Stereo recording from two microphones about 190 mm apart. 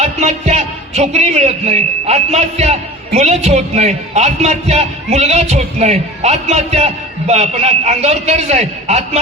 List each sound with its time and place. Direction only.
0.0 s a man's voice: 35° right (ahead or behind)